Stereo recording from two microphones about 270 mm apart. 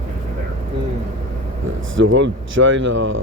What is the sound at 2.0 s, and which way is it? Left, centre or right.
Speech, right.